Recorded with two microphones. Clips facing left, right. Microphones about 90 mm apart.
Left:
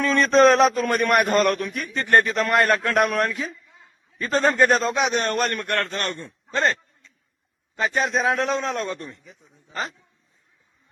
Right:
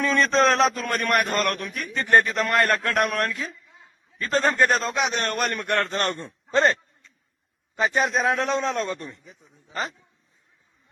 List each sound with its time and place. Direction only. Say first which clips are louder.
0.0 s a man's voice: left 4 dB; centre (ahead or behind)
1.1 s a man's voice: left 3 dB; 15° left (ahead or behind)
1.4 s a man's voice: left 5 dB; centre (ahead or behind)
5.6 s a man's voice: right 1 dB; 20° right (ahead or behind)
6.0 s a man's voice: right 2 dB; 35° right (ahead or behind)
7.9 s a man's voice: left 1 dB; centre (ahead or behind)